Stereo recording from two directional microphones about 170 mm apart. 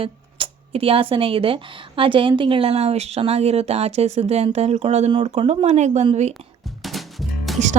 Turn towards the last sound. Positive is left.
turn(degrees=0)  # may be behind; listen again after turning